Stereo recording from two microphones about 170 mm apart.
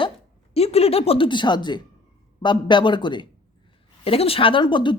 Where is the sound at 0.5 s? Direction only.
35° left (ahead or behind).